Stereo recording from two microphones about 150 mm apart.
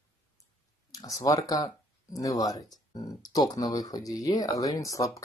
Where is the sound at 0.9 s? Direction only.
20° left (ahead or behind).